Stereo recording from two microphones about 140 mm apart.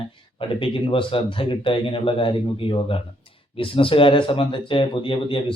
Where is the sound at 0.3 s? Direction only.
40° left (ahead or behind).